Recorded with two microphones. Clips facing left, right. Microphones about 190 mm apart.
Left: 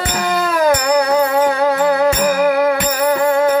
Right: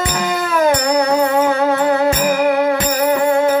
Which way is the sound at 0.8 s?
35° right (ahead or behind).